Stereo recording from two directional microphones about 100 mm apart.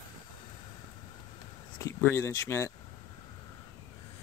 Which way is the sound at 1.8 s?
30° left (ahead or behind).